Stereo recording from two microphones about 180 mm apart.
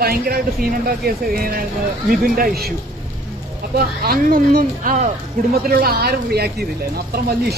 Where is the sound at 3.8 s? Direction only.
55° right (ahead or behind).